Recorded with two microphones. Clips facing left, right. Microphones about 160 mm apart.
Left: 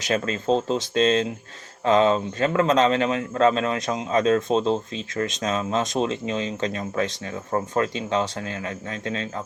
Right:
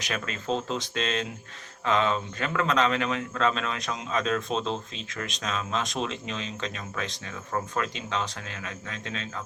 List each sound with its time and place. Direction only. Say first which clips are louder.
0.0 s speech: left 9 dB; 30° left (ahead or behind)